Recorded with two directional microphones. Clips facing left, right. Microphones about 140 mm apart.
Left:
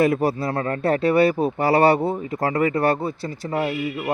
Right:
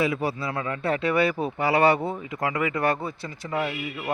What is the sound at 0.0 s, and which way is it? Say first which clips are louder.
Speech: left 6 dB; 45° left (ahead or behind).